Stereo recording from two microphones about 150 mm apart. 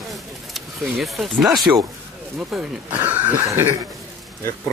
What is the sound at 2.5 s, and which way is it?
Speech, centre (ahead or behind).